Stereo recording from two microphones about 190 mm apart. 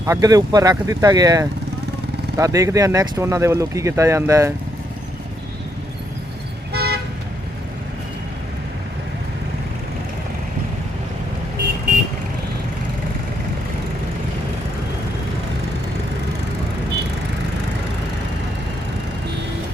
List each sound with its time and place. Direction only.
0.0 s speech: 20° right (ahead or behind)
6.7 s toot: 60° right (ahead or behind)